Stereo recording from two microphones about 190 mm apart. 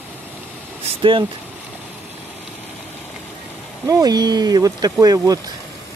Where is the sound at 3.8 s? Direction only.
20° right (ahead or behind).